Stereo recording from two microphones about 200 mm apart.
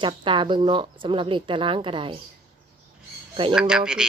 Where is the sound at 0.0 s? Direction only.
25° right (ahead or behind).